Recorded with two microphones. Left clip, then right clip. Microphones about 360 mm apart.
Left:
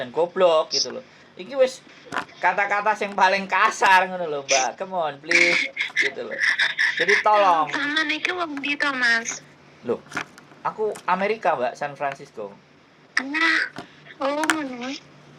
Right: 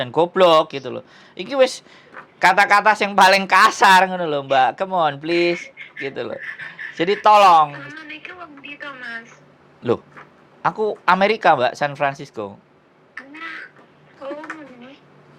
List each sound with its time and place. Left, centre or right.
0.0 s speech: right
6.4 s a woman's voice: left
7.0 s speech: right
7.7 s a woman's voice: left
9.8 s speech: right
13.1 s duck: left
14.2 s a sound: left